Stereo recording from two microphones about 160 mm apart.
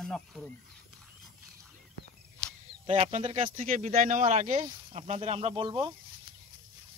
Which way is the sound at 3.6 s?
50° right (ahead or behind).